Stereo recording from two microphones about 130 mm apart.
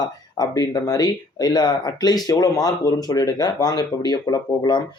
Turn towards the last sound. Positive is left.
turn(degrees=35)  # may be behind; listen again after turning